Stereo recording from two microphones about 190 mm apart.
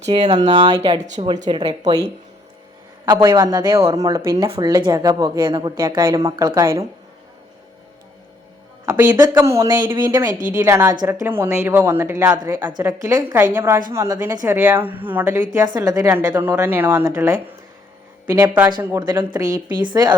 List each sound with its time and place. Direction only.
0.1 s a woman's voice: 25° right (ahead or behind)
1.5 s a woman's voice: 20° right (ahead or behind)
3.2 s a woman's voice: 20° right (ahead or behind)
8.9 s a woman's voice: 20° right (ahead or behind)